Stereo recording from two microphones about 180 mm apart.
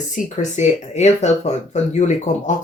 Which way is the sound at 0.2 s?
45° left (ahead or behind).